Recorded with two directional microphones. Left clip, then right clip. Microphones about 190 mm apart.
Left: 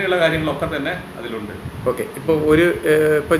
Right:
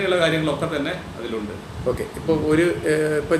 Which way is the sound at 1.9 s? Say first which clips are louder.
Left 3 dB; 30° left (ahead or behind).